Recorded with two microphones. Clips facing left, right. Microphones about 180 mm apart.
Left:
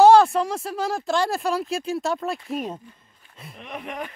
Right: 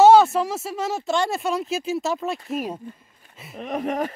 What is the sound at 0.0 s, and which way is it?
Speech, centre (ahead or behind).